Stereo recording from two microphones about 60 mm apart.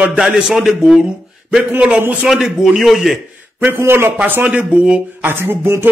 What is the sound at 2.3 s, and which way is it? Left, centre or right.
Speech, centre.